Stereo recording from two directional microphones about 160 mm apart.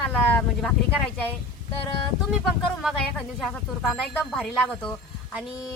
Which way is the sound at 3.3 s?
5° left (ahead or behind).